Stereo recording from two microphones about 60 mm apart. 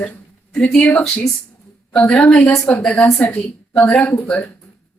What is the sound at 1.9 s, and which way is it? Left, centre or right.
A woman's voice, centre.